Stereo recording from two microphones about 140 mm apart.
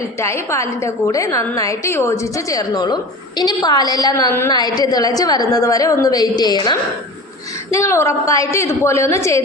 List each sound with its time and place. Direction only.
0.2 s a woman's voice: 20° left (ahead or behind)
7.7 s a woman's voice: 20° left (ahead or behind)